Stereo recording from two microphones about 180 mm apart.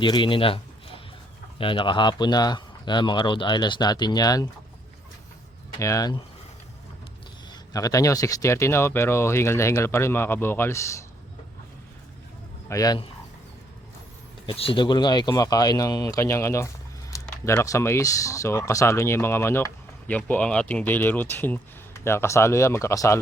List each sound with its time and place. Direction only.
0.0 s speech: 25° left (ahead or behind)
5.8 s speech: 20° left (ahead or behind)
7.5 s speech: 20° left (ahead or behind)
12.6 s speech: 20° left (ahead or behind)
14.4 s speech: 30° left (ahead or behind)